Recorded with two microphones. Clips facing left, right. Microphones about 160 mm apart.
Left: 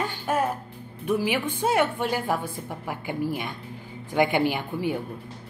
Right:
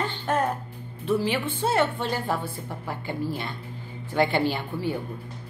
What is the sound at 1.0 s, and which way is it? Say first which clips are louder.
A woman's voice: even; 10° left (ahead or behind).